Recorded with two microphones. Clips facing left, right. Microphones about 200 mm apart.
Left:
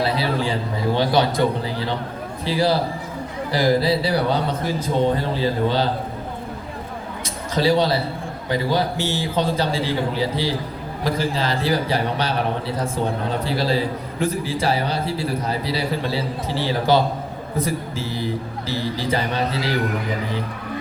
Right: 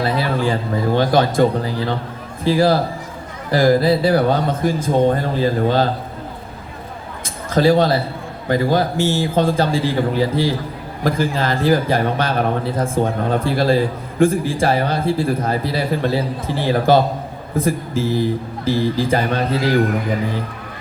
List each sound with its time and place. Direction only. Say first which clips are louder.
0.0 s a man's voice: right 3 dB; 50° right (ahead or behind)
7.5 s a man's voice: right 4 dB; 50° right (ahead or behind)